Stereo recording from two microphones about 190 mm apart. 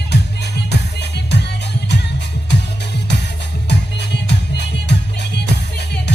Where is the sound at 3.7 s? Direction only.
65° left (ahead or behind).